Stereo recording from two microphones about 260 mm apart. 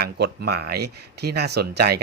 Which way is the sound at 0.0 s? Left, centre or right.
Right.